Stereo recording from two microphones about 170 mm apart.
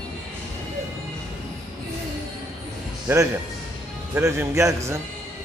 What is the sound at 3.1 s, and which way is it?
A man's voice, 15° right (ahead or behind).